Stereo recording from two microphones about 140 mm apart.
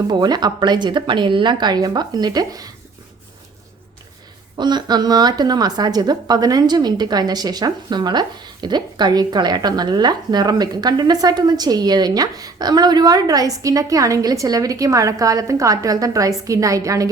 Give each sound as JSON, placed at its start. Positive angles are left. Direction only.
{"t": 0.1, "sound": "speech", "side_deg": -30}
{"t": 4.5, "sound": "a woman's voice", "side_deg": -30}